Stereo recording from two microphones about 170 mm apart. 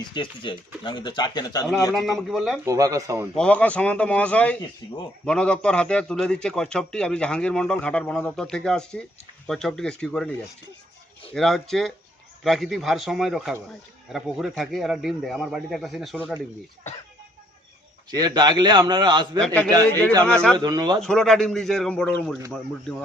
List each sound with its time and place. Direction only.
0.0 s speech: 30° left (ahead or behind)
1.9 s a man's voice: centre (ahead or behind)
2.6 s speech: 20° right (ahead or behind)
3.3 s a man's voice: 5° left (ahead or behind)
11.3 s a man's voice: centre (ahead or behind)
18.1 s a man's voice: 25° right (ahead or behind)
20.2 s a man's voice: 5° left (ahead or behind)
20.6 s a man's voice: 25° right (ahead or behind)
21.0 s a man's voice: 5° left (ahead or behind)